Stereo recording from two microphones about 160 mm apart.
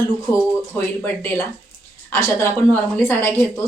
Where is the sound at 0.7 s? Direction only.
10° left (ahead or behind).